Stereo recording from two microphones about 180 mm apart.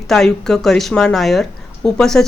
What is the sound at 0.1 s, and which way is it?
A woman's voice, 5° left (ahead or behind).